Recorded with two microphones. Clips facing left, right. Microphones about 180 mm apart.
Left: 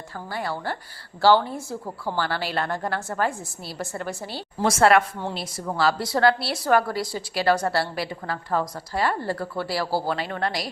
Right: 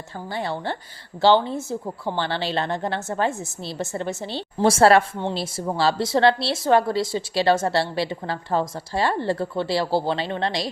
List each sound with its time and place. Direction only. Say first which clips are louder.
0.3 s a woman's voice: right 2 dB; 25° right (ahead or behind)